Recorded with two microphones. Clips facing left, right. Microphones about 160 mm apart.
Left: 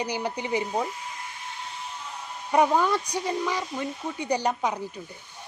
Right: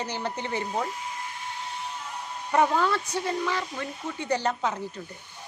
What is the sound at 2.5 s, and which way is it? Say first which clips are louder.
Speech: left 2 dB; 15° left (ahead or behind).